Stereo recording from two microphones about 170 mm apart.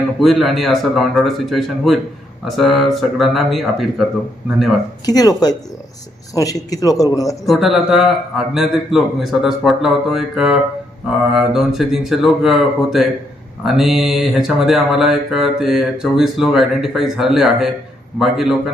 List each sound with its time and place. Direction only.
0.2 s speech: centre (ahead or behind)
5.0 s a man's voice: 20° left (ahead or behind)
7.4 s speech: centre (ahead or behind)